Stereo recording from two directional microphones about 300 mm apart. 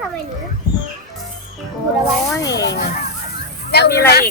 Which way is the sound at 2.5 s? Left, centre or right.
Left.